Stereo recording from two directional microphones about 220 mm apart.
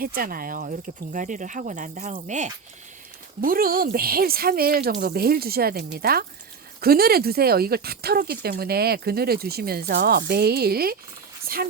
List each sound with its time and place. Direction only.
0.0 s speech: 40° right (ahead or behind)